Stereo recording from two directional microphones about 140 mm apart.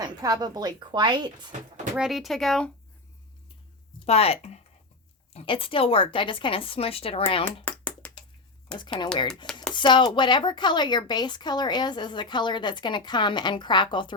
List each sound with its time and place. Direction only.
0.0 s speech: 25° right (ahead or behind)
2.0 s speech: centre (ahead or behind)
4.0 s a woman's voice: 45° left (ahead or behind)
7.4 s a sound: 10° left (ahead or behind)
8.7 s speech: 5° left (ahead or behind)
9.7 s a woman's voice: 35° left (ahead or behind)